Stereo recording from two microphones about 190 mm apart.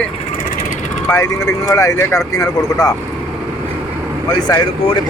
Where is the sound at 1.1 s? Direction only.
15° left (ahead or behind).